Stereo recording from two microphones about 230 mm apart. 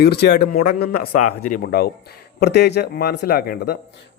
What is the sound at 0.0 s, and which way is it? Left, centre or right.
Speech, left.